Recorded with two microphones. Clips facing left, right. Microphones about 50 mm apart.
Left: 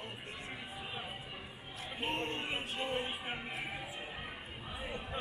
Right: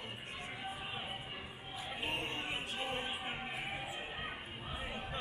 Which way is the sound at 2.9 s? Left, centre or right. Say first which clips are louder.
Left 2 dB; centre.